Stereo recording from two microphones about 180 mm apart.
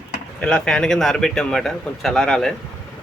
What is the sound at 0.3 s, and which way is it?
A man's voice, 5° left (ahead or behind).